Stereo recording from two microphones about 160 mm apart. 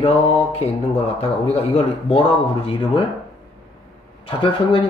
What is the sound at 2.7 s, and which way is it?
Speech, 30° left (ahead or behind).